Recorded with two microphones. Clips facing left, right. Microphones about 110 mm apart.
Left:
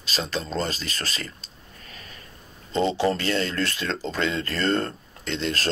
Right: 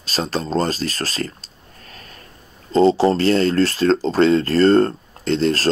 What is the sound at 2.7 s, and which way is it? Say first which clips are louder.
Speech: right 8 dB; 35° right (ahead or behind).